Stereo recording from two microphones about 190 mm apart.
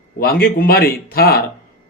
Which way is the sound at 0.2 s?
50° left (ahead or behind).